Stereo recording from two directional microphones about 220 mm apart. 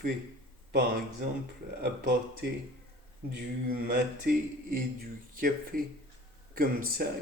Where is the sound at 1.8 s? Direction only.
45° right (ahead or behind).